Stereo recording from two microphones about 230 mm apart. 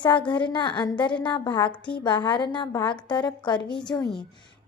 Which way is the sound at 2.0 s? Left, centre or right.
Centre.